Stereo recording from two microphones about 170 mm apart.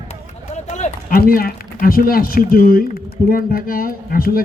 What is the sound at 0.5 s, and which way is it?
Run, 45° left (ahead or behind).